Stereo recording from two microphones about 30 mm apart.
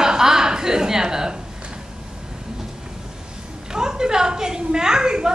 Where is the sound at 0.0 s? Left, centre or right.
Right.